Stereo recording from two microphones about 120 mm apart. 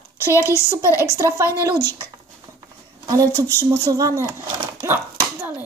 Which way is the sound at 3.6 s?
30° right (ahead or behind).